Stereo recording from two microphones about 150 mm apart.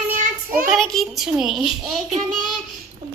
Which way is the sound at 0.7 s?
Centre (ahead or behind).